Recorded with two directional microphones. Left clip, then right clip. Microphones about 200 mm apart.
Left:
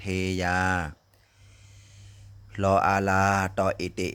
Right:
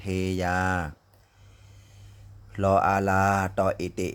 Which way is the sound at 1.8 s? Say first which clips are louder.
Left 2 dB; 5° left (ahead or behind).